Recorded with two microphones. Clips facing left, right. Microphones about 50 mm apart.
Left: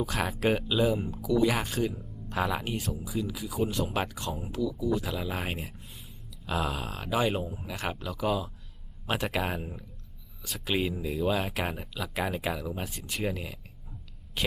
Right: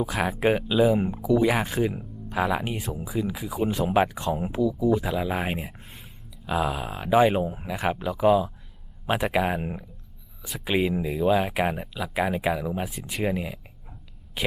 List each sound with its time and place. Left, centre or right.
0.0 s speech: centre
1.1 s speech: right
5.7 s a sound: right
6.4 s speech: centre
10.6 s speech: centre